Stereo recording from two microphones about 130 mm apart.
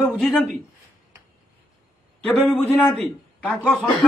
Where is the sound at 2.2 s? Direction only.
5° left (ahead or behind).